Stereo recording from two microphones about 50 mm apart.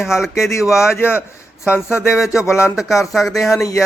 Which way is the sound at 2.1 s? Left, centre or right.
Left.